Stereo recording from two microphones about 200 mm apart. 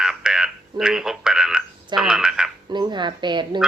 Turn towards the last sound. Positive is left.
turn(degrees=-20)  # may be behind; listen again after turning